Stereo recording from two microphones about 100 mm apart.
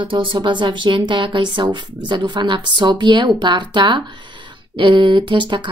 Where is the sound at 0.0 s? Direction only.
55° right (ahead or behind).